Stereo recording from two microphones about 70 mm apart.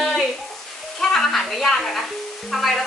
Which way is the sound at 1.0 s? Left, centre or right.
Centre.